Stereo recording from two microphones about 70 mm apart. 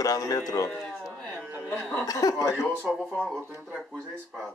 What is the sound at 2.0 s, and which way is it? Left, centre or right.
Speech, left.